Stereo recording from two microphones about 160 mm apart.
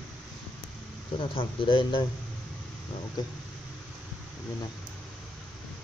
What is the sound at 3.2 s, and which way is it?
Speech, 25° left (ahead or behind).